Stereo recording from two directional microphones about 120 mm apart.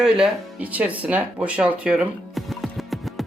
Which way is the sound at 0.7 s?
10° right (ahead or behind).